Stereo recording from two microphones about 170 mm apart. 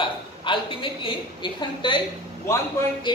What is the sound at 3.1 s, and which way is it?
Speech, 25° left (ahead or behind).